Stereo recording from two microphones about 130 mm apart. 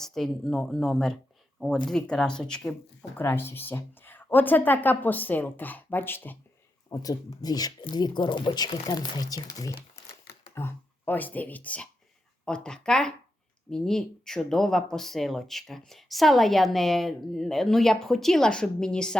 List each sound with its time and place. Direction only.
0.0 s speech: 5° left (ahead or behind)
3.2 s speech: 15° left (ahead or behind)
6.9 s speech: 30° left (ahead or behind); by 19.1 s 5° left (ahead or behind)